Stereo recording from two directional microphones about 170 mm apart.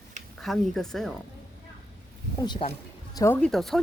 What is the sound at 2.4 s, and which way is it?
Speech, 30° left (ahead or behind).